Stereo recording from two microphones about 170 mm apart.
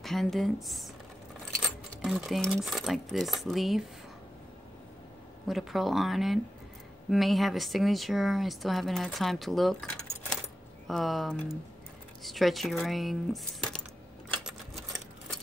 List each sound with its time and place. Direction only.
0.0 s speech: centre (ahead or behind)
5.5 s speech: centre (ahead or behind)
14.4 s a sound: centre (ahead or behind)